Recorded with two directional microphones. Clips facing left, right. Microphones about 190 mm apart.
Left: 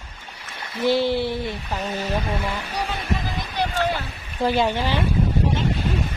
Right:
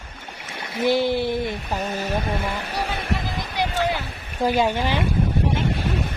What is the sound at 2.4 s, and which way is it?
Speech, 55° right (ahead or behind).